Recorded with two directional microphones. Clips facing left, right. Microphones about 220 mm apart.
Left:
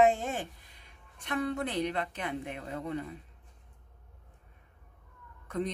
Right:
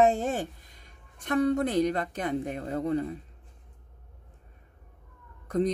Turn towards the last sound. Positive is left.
turn(degrees=-40)  # may be behind; listen again after turning